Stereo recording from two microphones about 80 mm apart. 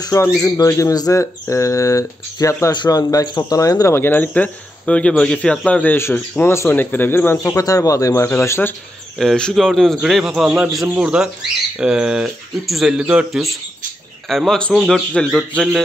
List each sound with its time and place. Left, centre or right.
0.4 s speech: left
2.7 s speech: left
3.9 s speech: left
7.5 s speech: left
9.2 s a man's voice: centre
14.3 s a man's voice: centre
15.1 s speech: centre